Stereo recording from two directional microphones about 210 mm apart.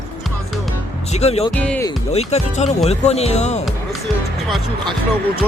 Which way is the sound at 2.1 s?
30° left (ahead or behind).